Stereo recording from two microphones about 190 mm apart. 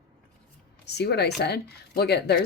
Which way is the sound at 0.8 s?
60° left (ahead or behind).